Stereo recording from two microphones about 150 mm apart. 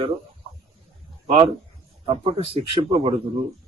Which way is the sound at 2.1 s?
35° right (ahead or behind).